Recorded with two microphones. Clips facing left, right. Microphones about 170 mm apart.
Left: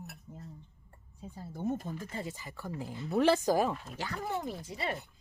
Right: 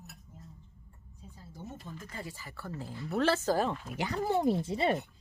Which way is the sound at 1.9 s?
25° left (ahead or behind).